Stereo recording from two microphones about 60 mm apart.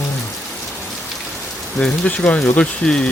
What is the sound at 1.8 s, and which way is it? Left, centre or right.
Speech, left.